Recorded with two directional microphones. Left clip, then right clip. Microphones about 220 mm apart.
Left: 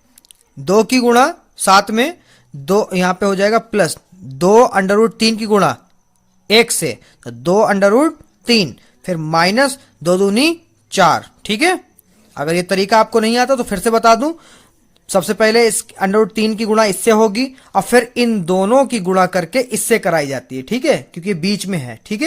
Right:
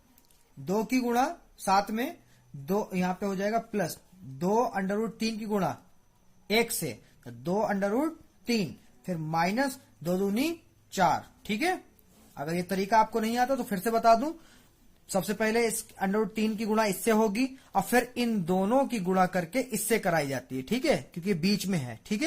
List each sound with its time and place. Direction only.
0.6 s speech: 40° left (ahead or behind)
6.5 s speech: 30° left (ahead or behind)